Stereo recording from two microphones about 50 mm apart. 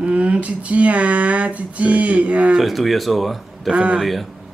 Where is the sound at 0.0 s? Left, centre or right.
Right.